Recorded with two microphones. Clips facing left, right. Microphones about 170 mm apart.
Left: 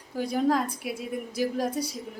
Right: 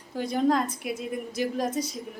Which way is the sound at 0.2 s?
5° left (ahead or behind).